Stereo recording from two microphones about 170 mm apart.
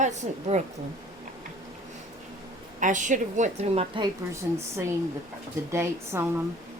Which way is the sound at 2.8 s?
50° right (ahead or behind).